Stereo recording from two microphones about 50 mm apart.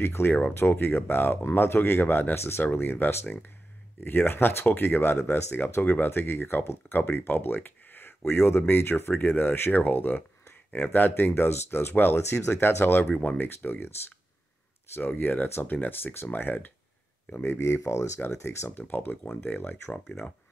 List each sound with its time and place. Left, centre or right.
0.0 s speech: left
2.6 s speech: left
12.2 s speech: left
15.1 s speech: left
17.3 s speech: left
17.6 s speech: left
18.8 s speech: left